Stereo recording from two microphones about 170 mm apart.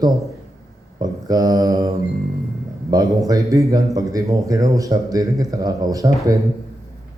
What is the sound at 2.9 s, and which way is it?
A man's voice, 20° right (ahead or behind).